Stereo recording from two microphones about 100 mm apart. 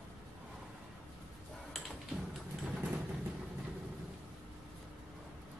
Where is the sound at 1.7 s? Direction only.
Centre (ahead or behind).